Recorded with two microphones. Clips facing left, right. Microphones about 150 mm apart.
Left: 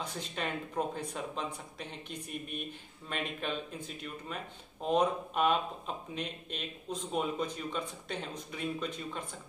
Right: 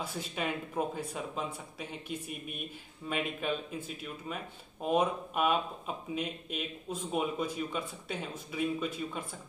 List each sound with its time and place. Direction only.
0.0 s speech: 5° right (ahead or behind)